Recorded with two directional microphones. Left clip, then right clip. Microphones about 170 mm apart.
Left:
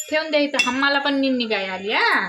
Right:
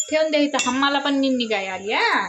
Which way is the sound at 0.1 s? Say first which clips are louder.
Right 1 dB; centre (ahead or behind).